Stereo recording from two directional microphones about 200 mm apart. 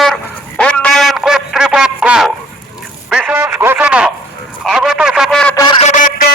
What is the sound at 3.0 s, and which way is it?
Radio, 5° right (ahead or behind).